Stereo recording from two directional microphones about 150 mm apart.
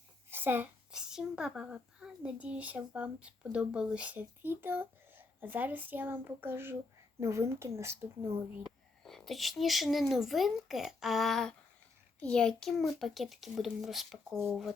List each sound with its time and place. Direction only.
0.3 s a woman's voice: 15° right (ahead or behind)
9.0 s a child's voice: centre (ahead or behind)